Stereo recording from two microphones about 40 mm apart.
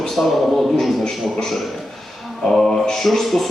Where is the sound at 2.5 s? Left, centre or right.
Centre.